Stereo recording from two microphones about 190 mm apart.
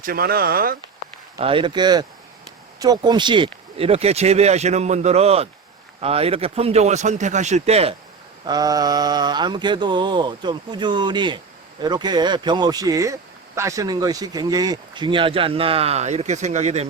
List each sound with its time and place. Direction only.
0.0 s speech: 50° right (ahead or behind)
1.4 s speech: 30° right (ahead or behind)
8.4 s speech: 20° right (ahead or behind); by 16.8 s 35° right (ahead or behind)